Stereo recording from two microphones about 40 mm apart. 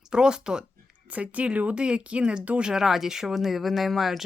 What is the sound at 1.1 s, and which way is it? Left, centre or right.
Speech, right.